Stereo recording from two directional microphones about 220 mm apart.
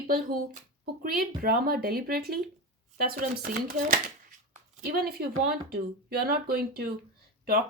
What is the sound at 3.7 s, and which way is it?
Speech, 40° right (ahead or behind).